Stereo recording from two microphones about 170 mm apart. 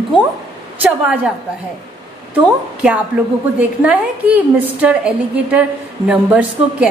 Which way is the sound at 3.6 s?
10° right (ahead or behind).